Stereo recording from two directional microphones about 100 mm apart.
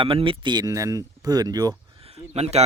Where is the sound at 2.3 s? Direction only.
90° right.